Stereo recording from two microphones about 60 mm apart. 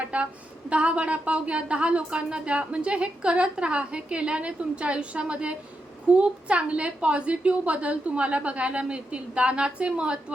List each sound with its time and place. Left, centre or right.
0.0 s speech: right